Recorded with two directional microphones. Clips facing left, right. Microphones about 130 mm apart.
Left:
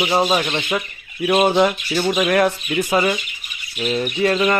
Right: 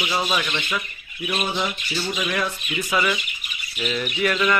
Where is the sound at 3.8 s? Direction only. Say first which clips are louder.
Left 5 dB; 30° left (ahead or behind).